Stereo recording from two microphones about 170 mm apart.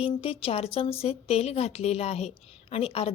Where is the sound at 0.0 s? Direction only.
35° left (ahead or behind).